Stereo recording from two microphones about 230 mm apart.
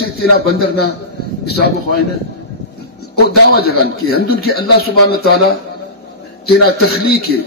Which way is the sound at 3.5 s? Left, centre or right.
Left.